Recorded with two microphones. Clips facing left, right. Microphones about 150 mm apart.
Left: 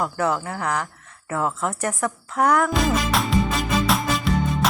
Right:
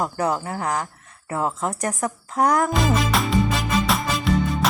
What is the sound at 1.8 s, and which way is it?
Speech, 35° right (ahead or behind).